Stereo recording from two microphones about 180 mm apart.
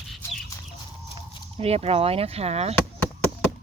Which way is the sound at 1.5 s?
35° right (ahead or behind).